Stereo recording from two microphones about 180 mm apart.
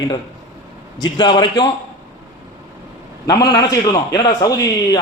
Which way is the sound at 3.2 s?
20° left (ahead or behind).